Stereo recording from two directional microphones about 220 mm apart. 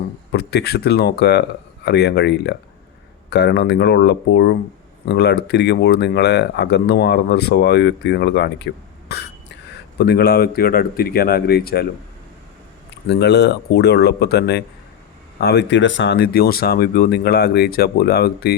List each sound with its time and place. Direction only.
0.3 s speech: 45° left (ahead or behind)
13.1 s speech: 50° left (ahead or behind)